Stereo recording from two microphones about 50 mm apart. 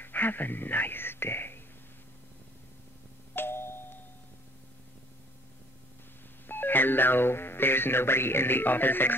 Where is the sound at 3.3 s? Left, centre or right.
Left.